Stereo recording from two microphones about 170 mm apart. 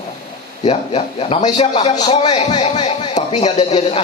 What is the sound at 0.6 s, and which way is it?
A man's voice, 35° left (ahead or behind).